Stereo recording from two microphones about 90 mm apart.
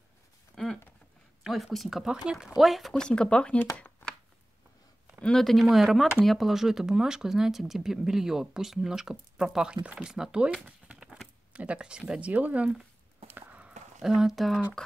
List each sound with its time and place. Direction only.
1.4 s speech: centre (ahead or behind)
2.9 s speech: 10° left (ahead or behind)
3.7 s a sound: 15° left (ahead or behind)
5.2 s speech: 5° left (ahead or behind); by 12.8 s 15° right (ahead or behind)
13.3 s walk: 15° right (ahead or behind)
14.0 s speech: 5° right (ahead or behind)